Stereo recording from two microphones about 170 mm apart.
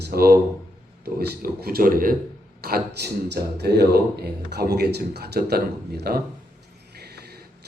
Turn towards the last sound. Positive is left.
turn(degrees=-70)  # may be behind; listen again after turning